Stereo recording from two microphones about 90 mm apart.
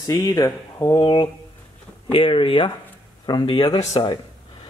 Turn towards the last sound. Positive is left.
turn(degrees=50)  # may be behind; listen again after turning